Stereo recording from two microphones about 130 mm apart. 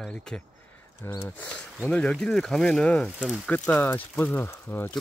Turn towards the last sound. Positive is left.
turn(degrees=20)  # may be behind; listen again after turning